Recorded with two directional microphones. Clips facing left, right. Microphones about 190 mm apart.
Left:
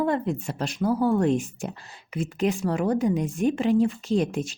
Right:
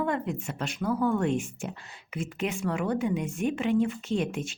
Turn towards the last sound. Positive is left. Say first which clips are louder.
# left 5 dB
turn(degrees=40)  # may be behind; listen again after turning